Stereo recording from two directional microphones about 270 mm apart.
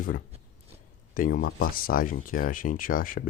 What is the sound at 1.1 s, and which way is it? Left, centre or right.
Speech, left.